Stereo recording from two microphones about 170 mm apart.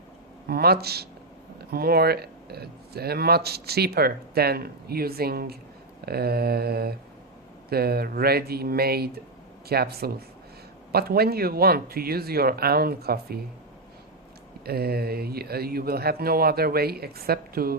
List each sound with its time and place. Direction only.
0.4 s speech: 65° right (ahead or behind)
14.6 s speech: 65° right (ahead or behind)